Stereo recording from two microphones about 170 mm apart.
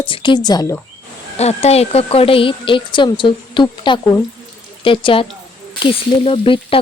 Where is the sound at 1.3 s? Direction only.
40° left (ahead or behind).